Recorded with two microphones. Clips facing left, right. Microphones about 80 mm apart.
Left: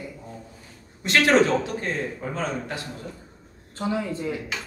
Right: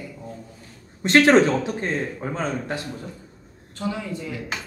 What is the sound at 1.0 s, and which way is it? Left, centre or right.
Speech, right.